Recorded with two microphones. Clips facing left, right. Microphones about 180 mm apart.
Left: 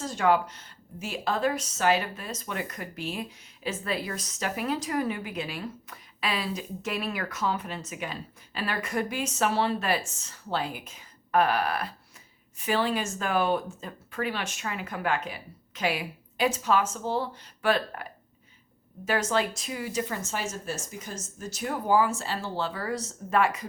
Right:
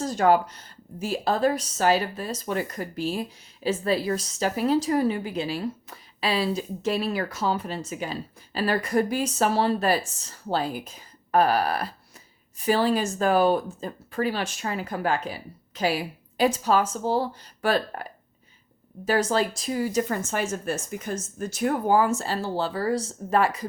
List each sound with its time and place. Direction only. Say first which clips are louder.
0.0 s speech: right 4 dB; 40° right (ahead or behind)